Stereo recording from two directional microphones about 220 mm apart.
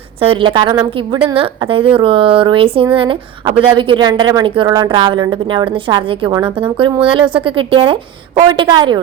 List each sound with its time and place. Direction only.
0.2 s a woman's voice: 25° right (ahead or behind)